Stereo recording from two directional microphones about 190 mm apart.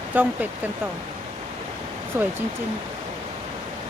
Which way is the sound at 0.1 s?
10° right (ahead or behind).